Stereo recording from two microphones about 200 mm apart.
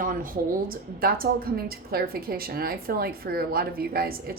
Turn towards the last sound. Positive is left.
turn(degrees=-50)  # may be behind; listen again after turning